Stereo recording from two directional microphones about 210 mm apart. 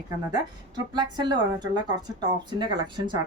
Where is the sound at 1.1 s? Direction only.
20° right (ahead or behind).